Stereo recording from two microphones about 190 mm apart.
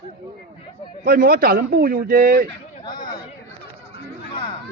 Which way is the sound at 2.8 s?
25° left (ahead or behind).